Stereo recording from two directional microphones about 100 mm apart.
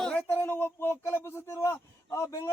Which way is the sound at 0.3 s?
20° left (ahead or behind).